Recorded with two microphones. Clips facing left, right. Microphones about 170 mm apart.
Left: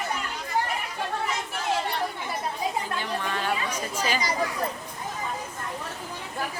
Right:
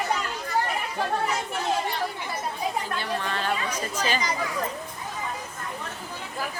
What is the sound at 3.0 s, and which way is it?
Speech, 10° left (ahead or behind).